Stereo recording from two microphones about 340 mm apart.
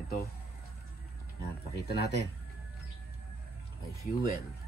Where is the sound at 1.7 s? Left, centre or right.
Left.